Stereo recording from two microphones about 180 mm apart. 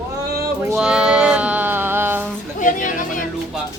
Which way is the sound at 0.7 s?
5° right (ahead or behind).